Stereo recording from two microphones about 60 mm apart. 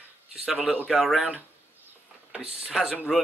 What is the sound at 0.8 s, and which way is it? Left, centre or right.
Speech, centre.